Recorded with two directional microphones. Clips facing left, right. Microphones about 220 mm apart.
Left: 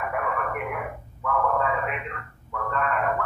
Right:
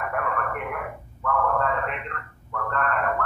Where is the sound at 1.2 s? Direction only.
5° left (ahead or behind).